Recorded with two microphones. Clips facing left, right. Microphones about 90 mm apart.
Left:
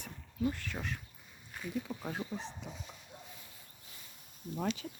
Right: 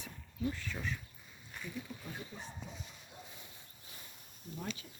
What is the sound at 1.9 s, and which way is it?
Speech, 75° left (ahead or behind).